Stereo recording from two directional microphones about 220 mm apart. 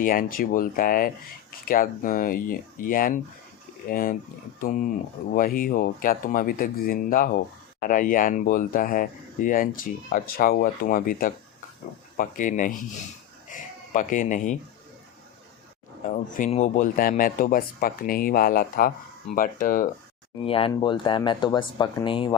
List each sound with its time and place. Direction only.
0.0 s speech: 40° left (ahead or behind)
5.3 s speech: 40° left (ahead or behind)
16.0 s speech: 35° left (ahead or behind)
20.4 s speech: 25° left (ahead or behind)